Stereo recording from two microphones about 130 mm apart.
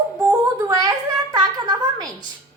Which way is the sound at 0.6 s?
30° right (ahead or behind).